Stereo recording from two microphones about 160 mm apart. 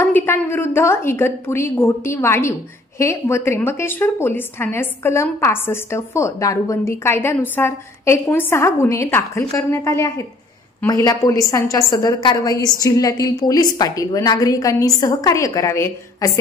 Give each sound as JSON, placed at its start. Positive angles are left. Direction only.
{"t": 0.0, "sound": "a woman's voice", "side_deg": 15}